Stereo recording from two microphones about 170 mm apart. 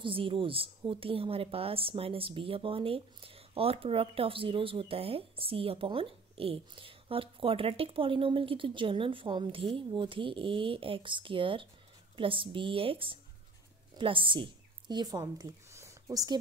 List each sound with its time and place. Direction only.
0.0 s a woman's voice: 30° right (ahead or behind)